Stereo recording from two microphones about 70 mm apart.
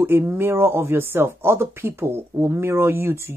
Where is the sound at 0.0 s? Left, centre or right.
Right.